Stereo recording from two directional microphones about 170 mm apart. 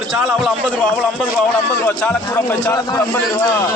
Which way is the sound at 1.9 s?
10° left (ahead or behind).